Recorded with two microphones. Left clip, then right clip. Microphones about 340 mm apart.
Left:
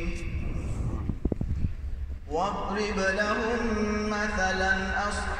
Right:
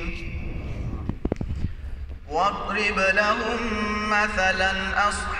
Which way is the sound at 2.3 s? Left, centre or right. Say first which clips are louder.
Right 5 dB; right.